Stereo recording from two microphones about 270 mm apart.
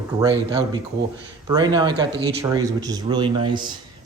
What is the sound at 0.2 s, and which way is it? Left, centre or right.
Speech, centre.